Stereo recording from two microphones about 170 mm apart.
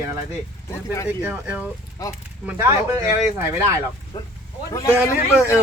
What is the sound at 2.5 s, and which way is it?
Speech, 20° right (ahead or behind).